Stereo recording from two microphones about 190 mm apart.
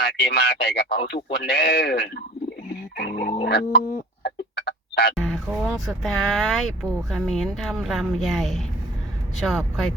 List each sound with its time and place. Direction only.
0.0 s speech: 60° left (ahead or behind)
4.2 s a sound: 60° left (ahead or behind)
5.1 s speech: centre (ahead or behind)